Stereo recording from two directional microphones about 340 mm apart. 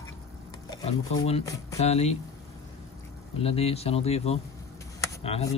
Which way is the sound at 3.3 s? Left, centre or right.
Centre.